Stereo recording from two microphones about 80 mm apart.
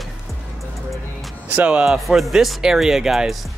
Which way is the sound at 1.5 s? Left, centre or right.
Centre.